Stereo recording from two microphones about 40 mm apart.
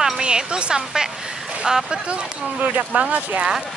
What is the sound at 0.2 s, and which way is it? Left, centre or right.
Speech, right.